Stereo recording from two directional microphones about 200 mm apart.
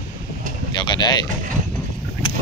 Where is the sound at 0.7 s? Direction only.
20° left (ahead or behind).